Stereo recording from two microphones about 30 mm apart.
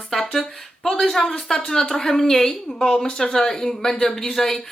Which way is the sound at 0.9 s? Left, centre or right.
Centre.